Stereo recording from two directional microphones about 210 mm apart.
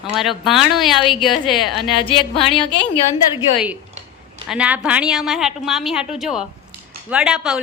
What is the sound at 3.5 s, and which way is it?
A woman's voice, 5° right (ahead or behind).